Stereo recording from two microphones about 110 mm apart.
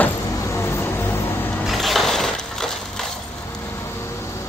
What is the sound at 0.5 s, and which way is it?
Vehicle, 25° left (ahead or behind).